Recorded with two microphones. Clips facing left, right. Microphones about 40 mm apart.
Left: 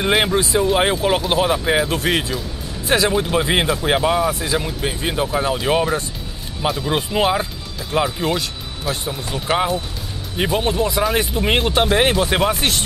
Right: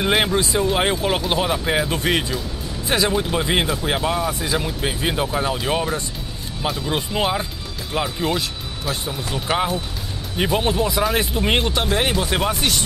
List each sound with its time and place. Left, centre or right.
0.0 s speech: centre
4.3 s speech: centre
11.7 s speech: left